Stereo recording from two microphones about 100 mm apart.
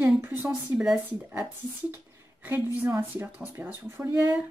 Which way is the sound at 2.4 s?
20° right (ahead or behind).